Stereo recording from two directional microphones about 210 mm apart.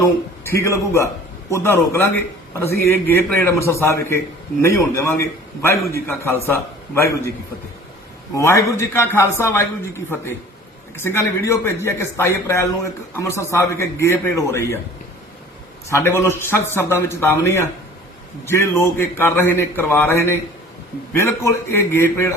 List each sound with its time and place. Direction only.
0.0 s a man's voice: 15° left (ahead or behind)
8.4 s a man's voice: 15° left (ahead or behind)
15.9 s a man's voice: 10° left (ahead or behind)